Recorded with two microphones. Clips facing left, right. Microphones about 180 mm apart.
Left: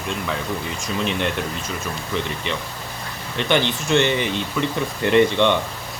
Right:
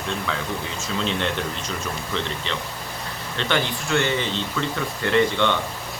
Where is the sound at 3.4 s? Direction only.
15° left (ahead or behind).